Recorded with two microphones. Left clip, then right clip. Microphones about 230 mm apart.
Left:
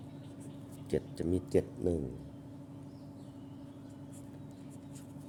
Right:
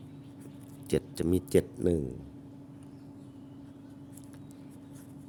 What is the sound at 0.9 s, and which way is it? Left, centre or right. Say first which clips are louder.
Speech: right 5 dB; right.